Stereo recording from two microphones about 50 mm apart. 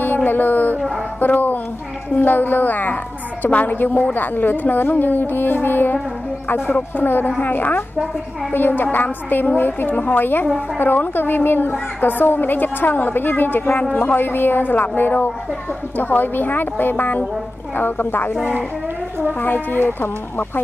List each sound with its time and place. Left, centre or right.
0.0 s a sound: left
1.2 s a woman's voice: left
7.0 s a woman's voice: left
19.4 s a woman's voice: left